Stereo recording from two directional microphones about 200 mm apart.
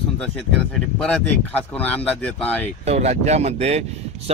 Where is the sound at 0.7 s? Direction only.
5° left (ahead or behind).